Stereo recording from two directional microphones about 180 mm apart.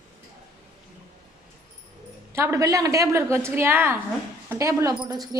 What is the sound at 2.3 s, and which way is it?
A woman's voice, 15° right (ahead or behind).